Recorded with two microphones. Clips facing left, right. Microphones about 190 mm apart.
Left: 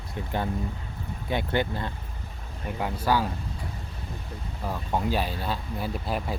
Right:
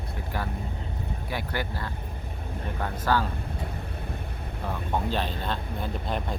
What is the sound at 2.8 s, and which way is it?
Speech, 10° left (ahead or behind).